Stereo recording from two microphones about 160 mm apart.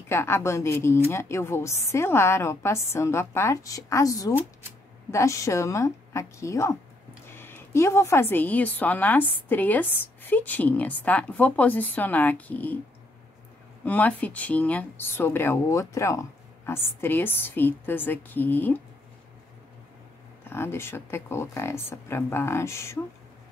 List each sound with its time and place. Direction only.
0.1 s a woman's voice: 15° left (ahead or behind)
13.8 s speech: 10° left (ahead or behind)
20.4 s speech: 15° left (ahead or behind)